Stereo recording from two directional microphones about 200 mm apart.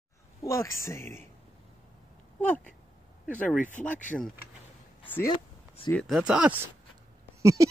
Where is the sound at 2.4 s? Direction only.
5° left (ahead or behind).